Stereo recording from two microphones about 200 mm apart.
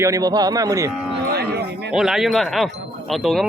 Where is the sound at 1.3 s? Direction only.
55° right (ahead or behind).